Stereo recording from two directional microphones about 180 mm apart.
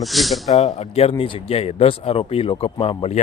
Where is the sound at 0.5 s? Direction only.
35° left (ahead or behind).